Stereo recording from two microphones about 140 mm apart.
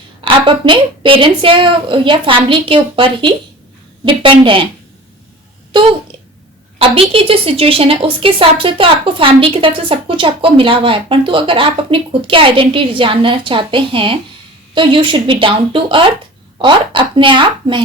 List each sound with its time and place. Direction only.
0.4 s a woman's voice: 35° right (ahead or behind)
5.7 s a woman's voice: 40° right (ahead or behind)